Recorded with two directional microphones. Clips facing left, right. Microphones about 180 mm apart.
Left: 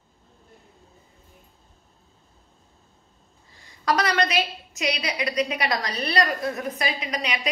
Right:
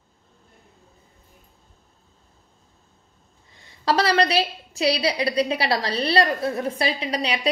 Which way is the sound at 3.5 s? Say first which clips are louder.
Right 2 dB; 30° right (ahead or behind).